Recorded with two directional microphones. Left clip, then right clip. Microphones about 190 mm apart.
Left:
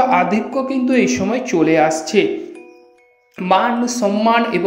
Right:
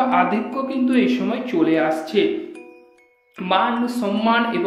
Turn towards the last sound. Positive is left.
turn(degrees=35)  # may be behind; listen again after turning